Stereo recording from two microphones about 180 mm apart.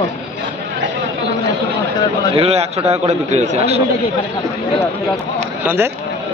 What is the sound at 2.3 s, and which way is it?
A man's voice, 35° right (ahead or behind).